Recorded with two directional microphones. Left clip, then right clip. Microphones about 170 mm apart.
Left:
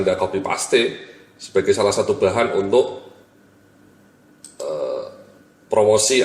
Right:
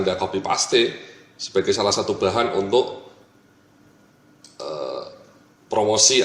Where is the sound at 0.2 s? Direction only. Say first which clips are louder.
Left 1 dB; 45° right (ahead or behind).